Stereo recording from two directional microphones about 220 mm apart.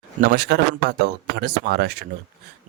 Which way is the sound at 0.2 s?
50° right (ahead or behind).